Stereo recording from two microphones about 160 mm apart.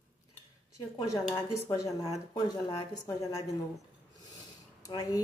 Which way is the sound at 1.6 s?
20° left (ahead or behind).